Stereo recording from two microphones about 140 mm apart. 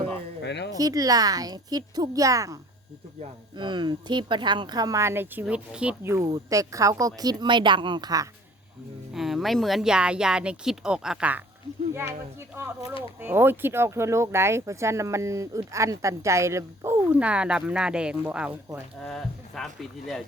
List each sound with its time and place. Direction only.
0.8 s speech: 25° right (ahead or behind)
3.6 s speech: 35° right (ahead or behind)
9.1 s speech: centre (ahead or behind)
13.2 s speech: 15° right (ahead or behind)
19.0 s speech: 5° left (ahead or behind)